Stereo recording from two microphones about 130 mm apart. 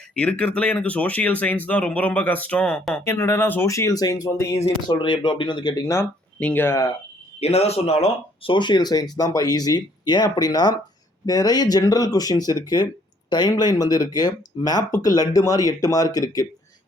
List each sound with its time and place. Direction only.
0.1 s speech: 10° left (ahead or behind)
7.3 s speech: 50° left (ahead or behind)
8.4 s speech: 35° left (ahead or behind)